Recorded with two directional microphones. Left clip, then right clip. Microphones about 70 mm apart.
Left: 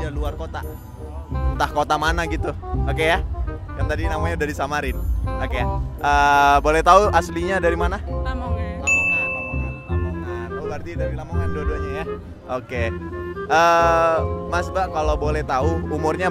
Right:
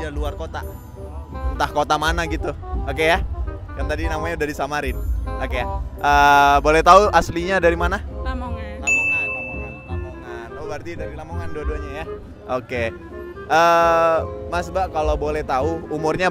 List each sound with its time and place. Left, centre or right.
0.0 s speech: centre
1.3 s speech: centre
8.2 s music: centre
10.2 s music: right
10.6 s music: right
11.0 s speech: centre
12.4 s speech: centre